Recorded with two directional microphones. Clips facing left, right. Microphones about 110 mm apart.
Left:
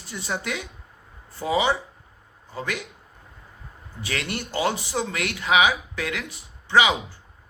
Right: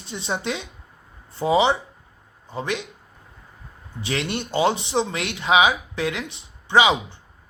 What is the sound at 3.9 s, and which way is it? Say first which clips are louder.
Speech: right 4 dB; 25° right (ahead or behind).